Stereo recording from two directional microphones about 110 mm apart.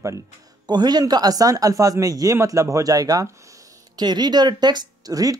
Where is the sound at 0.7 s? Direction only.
40° right (ahead or behind).